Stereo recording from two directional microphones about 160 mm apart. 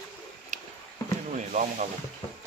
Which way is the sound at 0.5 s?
50° right (ahead or behind).